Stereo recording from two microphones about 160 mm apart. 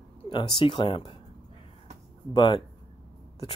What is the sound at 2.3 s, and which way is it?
Speech, 30° left (ahead or behind).